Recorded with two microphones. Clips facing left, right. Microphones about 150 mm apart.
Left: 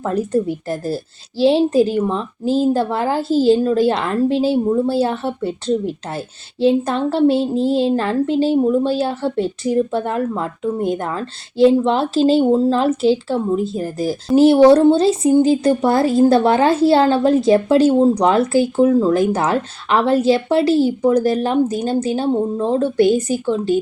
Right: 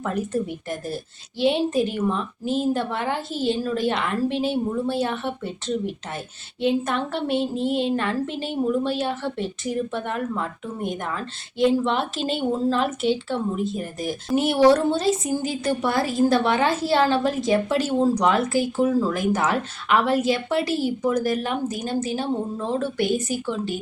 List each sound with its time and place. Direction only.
0.0 s speech: 30° left (ahead or behind)